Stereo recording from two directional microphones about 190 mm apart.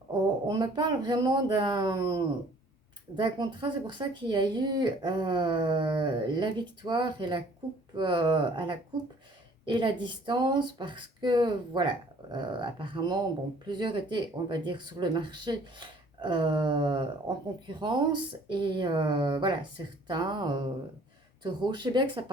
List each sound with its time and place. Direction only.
0.4 s speech: 20° right (ahead or behind)